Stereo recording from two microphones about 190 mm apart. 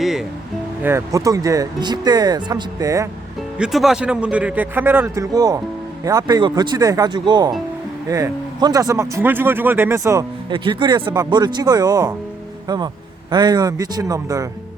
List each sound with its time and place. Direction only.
0.0 s music: centre (ahead or behind)
0.8 s speech: 15° right (ahead or behind)
3.6 s speech: centre (ahead or behind); by 14.4 s 20° right (ahead or behind)